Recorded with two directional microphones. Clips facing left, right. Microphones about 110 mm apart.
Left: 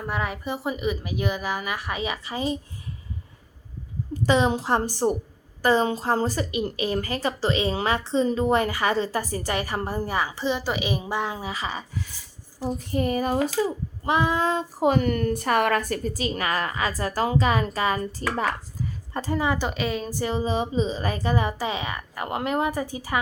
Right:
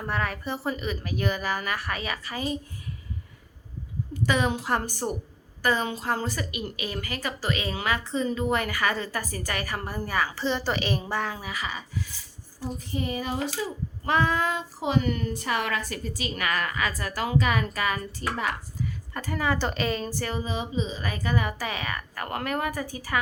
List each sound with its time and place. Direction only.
0.0 s speech: 10° left (ahead or behind)
4.3 s a woman's voice: 25° left (ahead or behind)
13.0 s speech: 50° left (ahead or behind)
14.0 s a woman's voice: 20° left (ahead or behind)
14.8 s a woman's voice: 50° left (ahead or behind); by 19.6 s 20° left (ahead or behind)
19.6 s a woman's voice: 5° left (ahead or behind)
20.1 s speech: 20° left (ahead or behind)
20.4 s a woman's voice: 35° left (ahead or behind)